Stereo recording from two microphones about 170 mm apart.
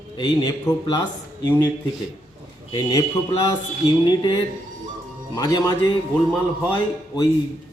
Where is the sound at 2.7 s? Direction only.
25° left (ahead or behind).